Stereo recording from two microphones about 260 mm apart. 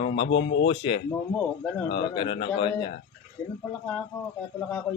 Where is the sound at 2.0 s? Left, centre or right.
Centre.